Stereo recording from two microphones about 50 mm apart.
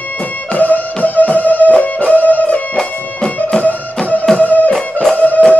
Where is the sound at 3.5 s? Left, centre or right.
Centre.